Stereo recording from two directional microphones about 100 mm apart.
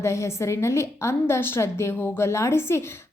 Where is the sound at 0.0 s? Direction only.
30° left (ahead or behind).